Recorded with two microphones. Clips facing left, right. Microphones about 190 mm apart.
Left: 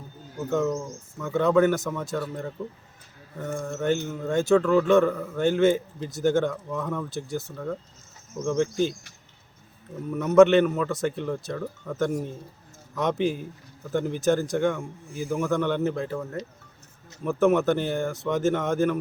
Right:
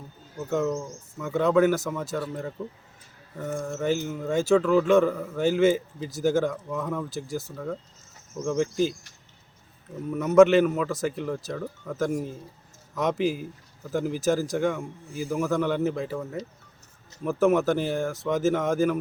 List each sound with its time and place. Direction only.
1.2 s speech: 5° right (ahead or behind)
10.1 s speech: 5° right (ahead or behind)